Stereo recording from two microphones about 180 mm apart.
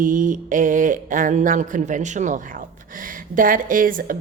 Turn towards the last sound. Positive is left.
turn(degrees=-50)  # may be behind; listen again after turning